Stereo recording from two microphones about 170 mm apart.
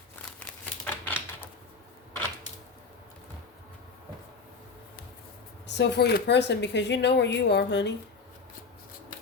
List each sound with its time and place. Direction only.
0.3 s crumpling: 10° left (ahead or behind)
5.6 s speech: 90° left